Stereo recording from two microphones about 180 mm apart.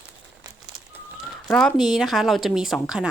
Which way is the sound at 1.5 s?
5° left (ahead or behind).